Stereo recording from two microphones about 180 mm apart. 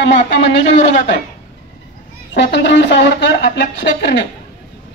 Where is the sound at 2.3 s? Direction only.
75° left (ahead or behind).